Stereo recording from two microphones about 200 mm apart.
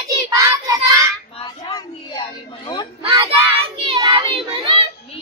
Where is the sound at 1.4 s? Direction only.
20° left (ahead or behind).